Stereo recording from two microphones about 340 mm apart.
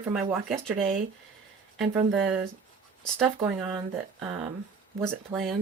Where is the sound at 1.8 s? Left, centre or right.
Centre.